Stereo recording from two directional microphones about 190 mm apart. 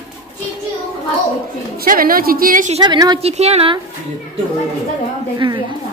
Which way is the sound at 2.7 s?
25° right (ahead or behind).